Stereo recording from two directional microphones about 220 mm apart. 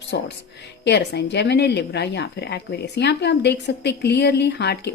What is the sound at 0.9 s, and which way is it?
Speech, 50° left (ahead or behind).